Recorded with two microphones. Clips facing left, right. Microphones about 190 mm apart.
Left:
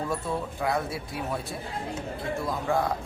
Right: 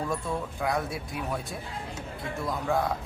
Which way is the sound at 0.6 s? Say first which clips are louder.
Left 1 dB; centre (ahead or behind).